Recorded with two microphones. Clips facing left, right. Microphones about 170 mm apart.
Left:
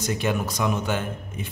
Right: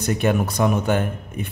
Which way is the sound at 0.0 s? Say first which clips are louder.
Right 5 dB; 55° right (ahead or behind).